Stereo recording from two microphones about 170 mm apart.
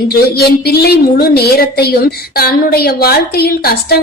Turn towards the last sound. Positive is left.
turn(degrees=65)  # may be behind; listen again after turning